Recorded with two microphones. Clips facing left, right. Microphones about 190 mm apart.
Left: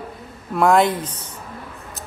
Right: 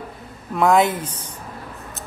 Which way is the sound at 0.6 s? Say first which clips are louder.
Left 1 dB; centre (ahead or behind).